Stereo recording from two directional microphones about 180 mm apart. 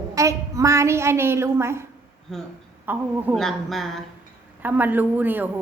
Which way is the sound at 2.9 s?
10° right (ahead or behind).